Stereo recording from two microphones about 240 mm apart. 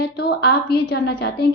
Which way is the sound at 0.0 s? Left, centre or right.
Left.